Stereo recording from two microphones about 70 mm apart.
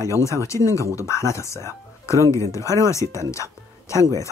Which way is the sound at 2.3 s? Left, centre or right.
Left.